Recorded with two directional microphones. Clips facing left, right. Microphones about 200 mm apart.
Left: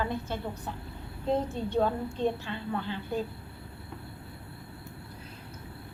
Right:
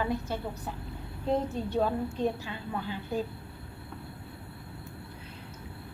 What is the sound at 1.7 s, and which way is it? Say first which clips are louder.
A woman's voice: left 1 dB; 10° right (ahead or behind).